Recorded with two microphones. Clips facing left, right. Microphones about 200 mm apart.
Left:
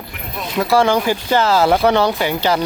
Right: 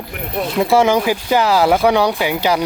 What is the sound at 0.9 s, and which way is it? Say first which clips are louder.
Speech: right 1 dB; 10° right (ahead or behind).